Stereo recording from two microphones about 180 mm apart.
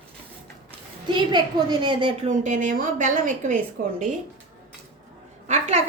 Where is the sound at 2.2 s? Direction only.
45° right (ahead or behind).